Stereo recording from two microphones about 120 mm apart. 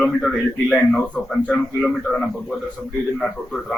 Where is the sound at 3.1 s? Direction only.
5° left (ahead or behind).